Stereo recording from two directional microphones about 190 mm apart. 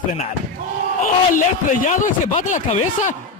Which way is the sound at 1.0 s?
45° left (ahead or behind).